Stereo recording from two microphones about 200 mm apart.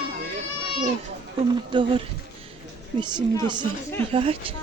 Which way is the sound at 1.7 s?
25° right (ahead or behind).